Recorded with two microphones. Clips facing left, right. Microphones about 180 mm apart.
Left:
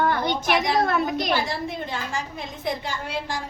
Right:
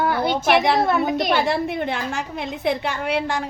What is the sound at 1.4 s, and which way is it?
A woman's voice, 65° right (ahead or behind).